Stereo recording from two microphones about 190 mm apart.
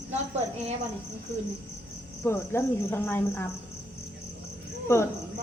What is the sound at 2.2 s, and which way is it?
Speech, 10° left (ahead or behind).